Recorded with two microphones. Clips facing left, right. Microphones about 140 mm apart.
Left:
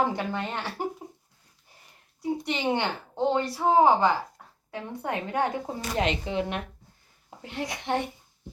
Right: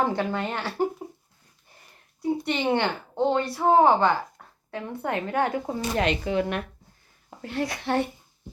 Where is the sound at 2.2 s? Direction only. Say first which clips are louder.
Right 3 dB; 15° left (ahead or behind).